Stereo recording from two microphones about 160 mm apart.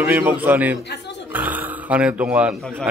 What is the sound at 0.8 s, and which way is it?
Speech, 90° left.